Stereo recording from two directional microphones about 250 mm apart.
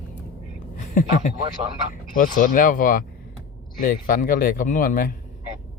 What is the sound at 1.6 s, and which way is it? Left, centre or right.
Speech, right.